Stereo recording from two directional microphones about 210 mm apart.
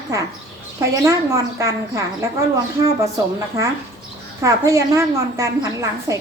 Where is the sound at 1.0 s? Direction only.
15° right (ahead or behind).